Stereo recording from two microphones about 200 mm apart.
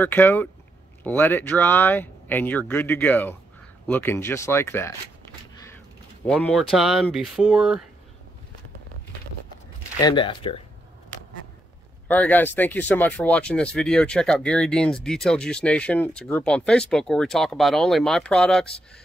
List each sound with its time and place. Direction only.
0.0 s speech: 10° left (ahead or behind)
9.9 s speech: 20° left (ahead or behind)
12.1 s speech: 10° left (ahead or behind)